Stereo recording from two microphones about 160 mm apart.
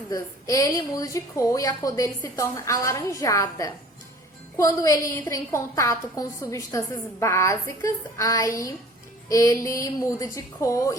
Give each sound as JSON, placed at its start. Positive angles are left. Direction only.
{"t": 0.1, "sound": "a woman's voice", "side_deg": 20}